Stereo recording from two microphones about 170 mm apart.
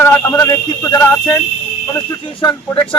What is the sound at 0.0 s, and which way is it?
Speech, 15° left (ahead or behind).